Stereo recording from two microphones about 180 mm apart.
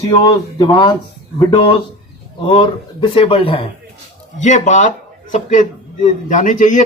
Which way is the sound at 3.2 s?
30° left (ahead or behind).